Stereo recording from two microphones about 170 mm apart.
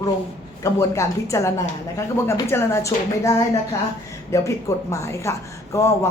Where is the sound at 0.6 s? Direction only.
15° left (ahead or behind).